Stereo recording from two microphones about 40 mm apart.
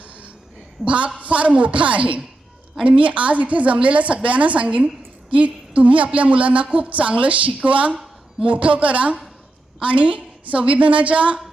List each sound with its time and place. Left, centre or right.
0.9 s a woman's voice: right